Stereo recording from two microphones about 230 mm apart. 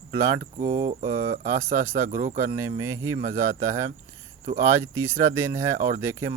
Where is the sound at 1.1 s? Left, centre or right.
Centre.